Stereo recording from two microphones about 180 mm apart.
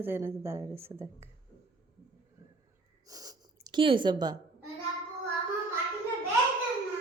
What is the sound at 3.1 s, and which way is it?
Snort, 20° right (ahead or behind).